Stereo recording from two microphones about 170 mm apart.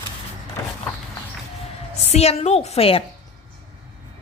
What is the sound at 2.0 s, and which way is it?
Speech, 35° left (ahead or behind).